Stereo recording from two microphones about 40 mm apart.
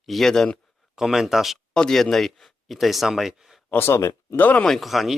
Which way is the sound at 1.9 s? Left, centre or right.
Centre.